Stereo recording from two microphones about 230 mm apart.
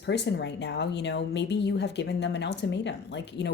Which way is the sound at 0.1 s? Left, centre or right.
Left.